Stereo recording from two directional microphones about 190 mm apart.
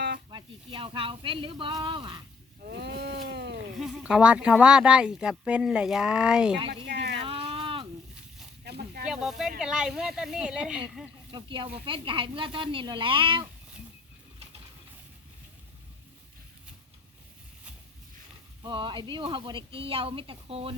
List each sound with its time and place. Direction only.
0.3 s speech: 25° right (ahead or behind)
2.6 s a sound: 60° right (ahead or behind)
3.8 s speech: centre (ahead or behind)
6.8 s a sound: 60° right (ahead or behind)
7.5 s a sound: 25° right (ahead or behind)
8.6 s snake: 60° right (ahead or behind)
9.0 s snake: 5° right (ahead or behind)
9.6 s speech: 5° right (ahead or behind)
11.3 s speech: 25° right (ahead or behind)
18.6 s speech: 25° right (ahead or behind)